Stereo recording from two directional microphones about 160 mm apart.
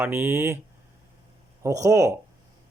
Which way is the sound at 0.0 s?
15° right (ahead or behind).